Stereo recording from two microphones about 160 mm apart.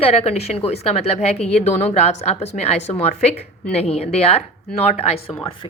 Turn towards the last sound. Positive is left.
turn(degrees=40)  # may be behind; listen again after turning